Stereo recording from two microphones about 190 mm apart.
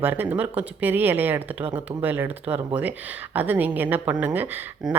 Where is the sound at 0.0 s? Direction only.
10° right (ahead or behind).